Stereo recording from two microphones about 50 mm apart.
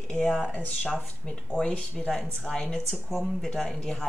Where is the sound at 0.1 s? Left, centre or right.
Centre.